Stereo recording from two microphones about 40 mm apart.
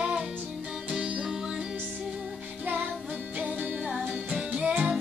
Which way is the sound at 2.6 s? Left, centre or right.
Right.